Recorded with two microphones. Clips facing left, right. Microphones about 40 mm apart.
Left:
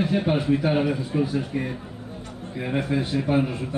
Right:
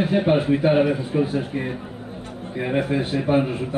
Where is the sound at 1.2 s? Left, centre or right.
Right.